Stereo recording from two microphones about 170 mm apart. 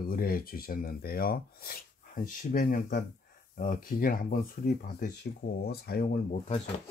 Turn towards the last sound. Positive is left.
turn(degrees=60)  # may be behind; listen again after turning